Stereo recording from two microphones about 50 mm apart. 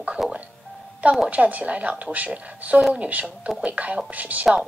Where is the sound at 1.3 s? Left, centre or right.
Right.